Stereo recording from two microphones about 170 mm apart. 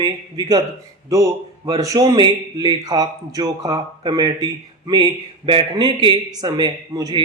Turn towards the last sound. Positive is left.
turn(degrees=-20)  # may be behind; listen again after turning